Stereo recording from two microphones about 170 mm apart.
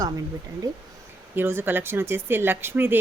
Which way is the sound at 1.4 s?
10° right (ahead or behind).